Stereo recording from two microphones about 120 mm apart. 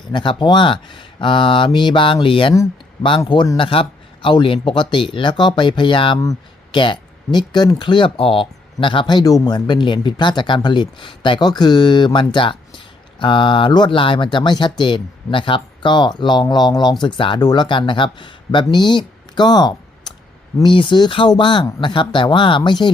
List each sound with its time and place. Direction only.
0.1 s speech: 40° left (ahead or behind)
3.6 s speech: 45° left (ahead or behind)